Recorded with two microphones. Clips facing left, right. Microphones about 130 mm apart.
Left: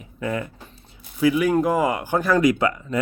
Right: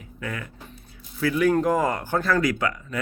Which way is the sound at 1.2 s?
10° left (ahead or behind).